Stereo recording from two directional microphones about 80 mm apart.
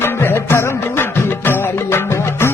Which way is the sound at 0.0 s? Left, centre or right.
Left.